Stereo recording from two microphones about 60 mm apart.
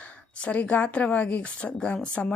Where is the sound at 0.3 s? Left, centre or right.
Left.